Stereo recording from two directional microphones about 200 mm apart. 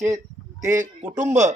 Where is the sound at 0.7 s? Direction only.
40° right (ahead or behind).